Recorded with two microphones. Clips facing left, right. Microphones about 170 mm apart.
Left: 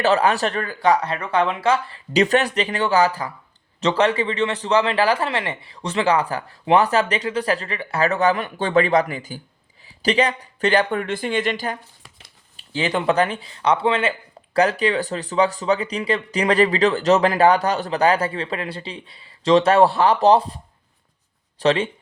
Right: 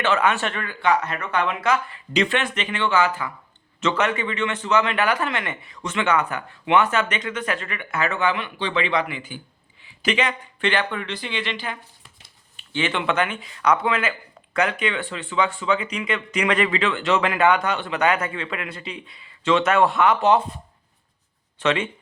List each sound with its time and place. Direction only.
0.0 s speech: 35° left (ahead or behind)
21.6 s speech: 35° left (ahead or behind)